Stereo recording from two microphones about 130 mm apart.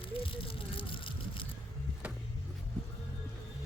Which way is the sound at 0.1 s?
45° left (ahead or behind).